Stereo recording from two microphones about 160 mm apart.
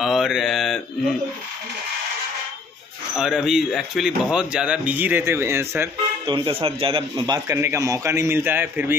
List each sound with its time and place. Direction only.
0.0 s mantra: centre (ahead or behind)
3.2 s speech: 5° right (ahead or behind)
6.2 s a man's voice: 30° right (ahead or behind); by 8.9 s 15° right (ahead or behind)